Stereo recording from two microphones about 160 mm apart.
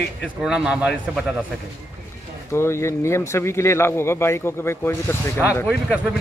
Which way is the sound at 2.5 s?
15° left (ahead or behind).